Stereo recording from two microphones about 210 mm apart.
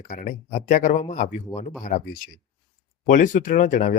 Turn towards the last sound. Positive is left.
turn(degrees=40)  # may be behind; listen again after turning